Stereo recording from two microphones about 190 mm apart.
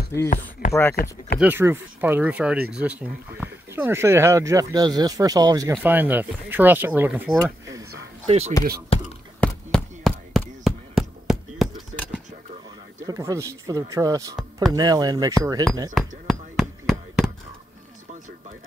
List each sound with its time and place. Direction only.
0.3 s speech: 45° left (ahead or behind)
1.4 s speech: 10° right (ahead or behind)
5.9 s speech: 10° right (ahead or behind)
8.3 s speech: 35° right (ahead or behind)
9.4 s a sound: 5° left (ahead or behind)
13.0 s speech: 20° right (ahead or behind)
15.9 s a sound: centre (ahead or behind)